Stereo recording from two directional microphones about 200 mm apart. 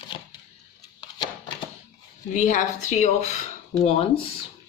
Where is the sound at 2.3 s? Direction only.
40° left (ahead or behind).